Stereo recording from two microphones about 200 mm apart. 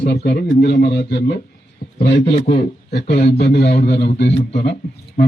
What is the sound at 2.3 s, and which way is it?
Speech, 40° left (ahead or behind).